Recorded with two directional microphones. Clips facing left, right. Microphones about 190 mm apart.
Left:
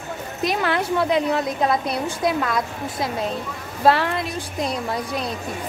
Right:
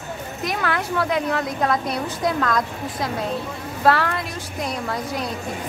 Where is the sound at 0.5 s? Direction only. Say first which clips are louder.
Left 3 dB; 25° left (ahead or behind).